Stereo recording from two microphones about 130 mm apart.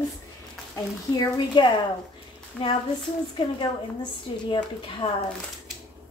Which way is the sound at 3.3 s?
40° left (ahead or behind).